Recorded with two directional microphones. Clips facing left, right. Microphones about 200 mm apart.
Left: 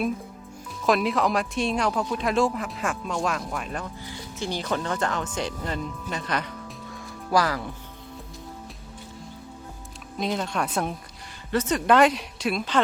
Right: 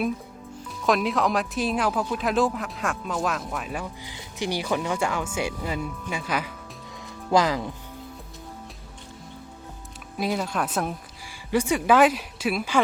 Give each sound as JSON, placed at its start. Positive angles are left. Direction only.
{"t": 0.8, "sound": "speech", "side_deg": 0}
{"t": 6.9, "sound": "music", "side_deg": -20}
{"t": 10.2, "sound": "speech", "side_deg": -5}